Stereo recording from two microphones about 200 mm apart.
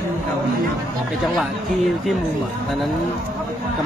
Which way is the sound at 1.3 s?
Centre (ahead or behind).